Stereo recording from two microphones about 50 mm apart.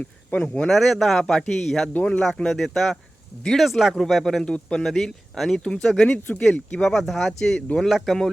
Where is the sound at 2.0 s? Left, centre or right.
Centre.